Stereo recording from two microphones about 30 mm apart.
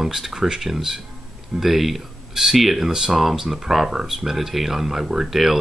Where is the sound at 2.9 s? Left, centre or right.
Right.